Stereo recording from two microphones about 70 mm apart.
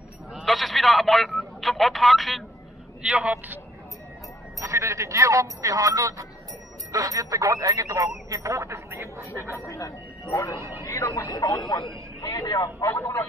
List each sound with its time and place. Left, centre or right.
0.3 s a sound: centre
3.0 s speech: centre
4.6 s speech: right
9.3 s speech: left